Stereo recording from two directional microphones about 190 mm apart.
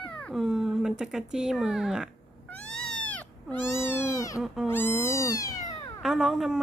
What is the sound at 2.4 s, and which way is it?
Cat, 5° left (ahead or behind).